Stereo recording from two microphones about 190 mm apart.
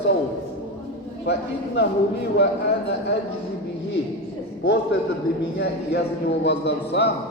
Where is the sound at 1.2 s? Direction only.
65° left (ahead or behind).